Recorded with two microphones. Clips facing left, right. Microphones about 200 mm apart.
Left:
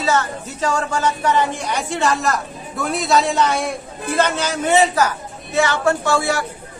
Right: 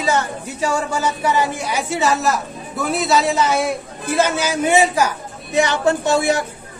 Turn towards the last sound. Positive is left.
turn(degrees=-20)  # may be behind; listen again after turning